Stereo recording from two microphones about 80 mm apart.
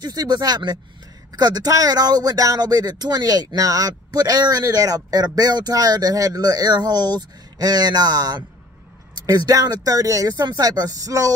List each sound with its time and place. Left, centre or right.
0.0 s speech: right